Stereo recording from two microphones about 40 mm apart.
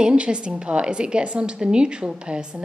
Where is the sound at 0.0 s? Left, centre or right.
Right.